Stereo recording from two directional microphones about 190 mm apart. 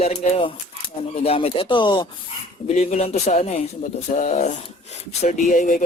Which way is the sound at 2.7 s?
35° left (ahead or behind).